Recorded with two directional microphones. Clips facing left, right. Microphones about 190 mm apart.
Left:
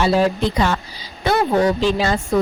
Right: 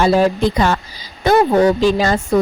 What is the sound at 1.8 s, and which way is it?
Speech, 45° right (ahead or behind).